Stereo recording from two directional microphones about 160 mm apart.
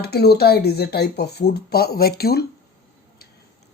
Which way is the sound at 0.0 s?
85° left.